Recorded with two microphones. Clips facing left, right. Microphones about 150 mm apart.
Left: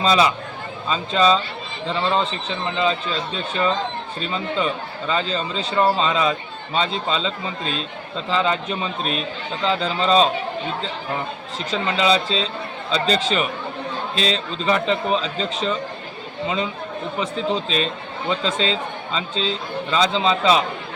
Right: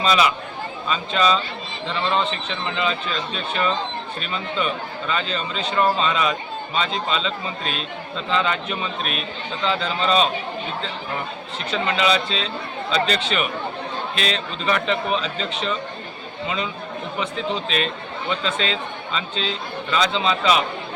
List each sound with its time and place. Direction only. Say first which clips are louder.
0.0 s a man's voice: left 2 dB; 30° left (ahead or behind)
11.9 s a man's voice: left 2 dB; 25° left (ahead or behind)
17.2 s a man's voice: left 3 dB; 30° left (ahead or behind)